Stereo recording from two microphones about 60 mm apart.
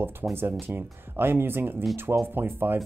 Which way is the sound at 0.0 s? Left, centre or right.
Right.